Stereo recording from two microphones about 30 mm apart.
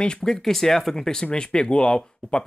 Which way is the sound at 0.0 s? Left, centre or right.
Left.